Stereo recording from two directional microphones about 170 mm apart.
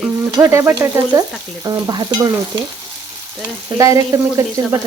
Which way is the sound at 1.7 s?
25° right (ahead or behind).